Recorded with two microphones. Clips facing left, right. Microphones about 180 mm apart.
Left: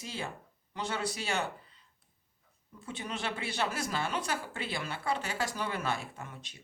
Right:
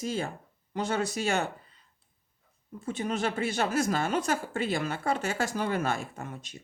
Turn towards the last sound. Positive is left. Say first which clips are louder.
# right 5 dB
turn(degrees=-45)  # may be behind; listen again after turning